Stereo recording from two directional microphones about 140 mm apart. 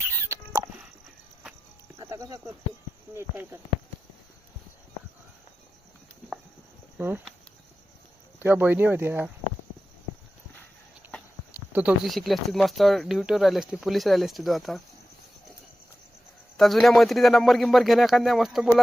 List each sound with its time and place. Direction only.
2.0 s cricket: 25° right (ahead or behind)
3.2 s speech: 15° right (ahead or behind)
7.0 s speech: 15° right (ahead or behind)
8.4 s speech: 15° right (ahead or behind)
11.7 s speech: 10° right (ahead or behind)
16.6 s speech: centre (ahead or behind)